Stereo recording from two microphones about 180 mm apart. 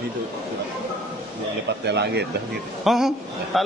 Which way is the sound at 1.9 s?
70° right (ahead or behind).